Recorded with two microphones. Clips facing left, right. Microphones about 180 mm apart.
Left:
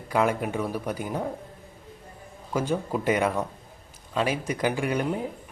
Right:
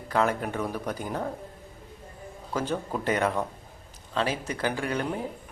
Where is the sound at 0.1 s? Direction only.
10° left (ahead or behind).